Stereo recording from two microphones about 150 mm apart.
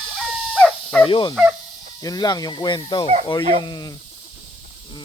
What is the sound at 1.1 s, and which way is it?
Speech, 35° left (ahead or behind).